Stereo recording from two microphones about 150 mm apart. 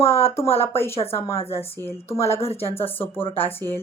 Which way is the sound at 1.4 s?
40° left (ahead or behind).